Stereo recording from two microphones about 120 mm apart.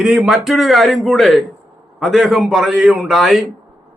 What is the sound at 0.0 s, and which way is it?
Speech, 5° right (ahead or behind).